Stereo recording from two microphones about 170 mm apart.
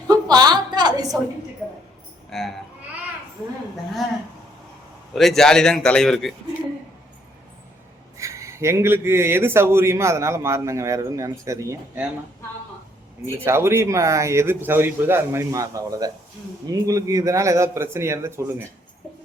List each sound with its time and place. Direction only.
0.1 s a sound: 25° right (ahead or behind)
2.3 s a man's voice: centre (ahead or behind)
5.1 s a man's voice: centre (ahead or behind)
8.2 s a man's voice: 15° right (ahead or behind)
13.3 s a man's voice: 15° right (ahead or behind)